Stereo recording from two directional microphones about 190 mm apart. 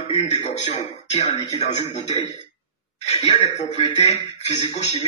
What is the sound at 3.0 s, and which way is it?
Speech, 30° left (ahead or behind).